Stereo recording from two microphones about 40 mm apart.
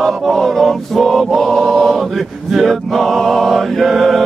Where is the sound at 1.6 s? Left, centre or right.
Centre.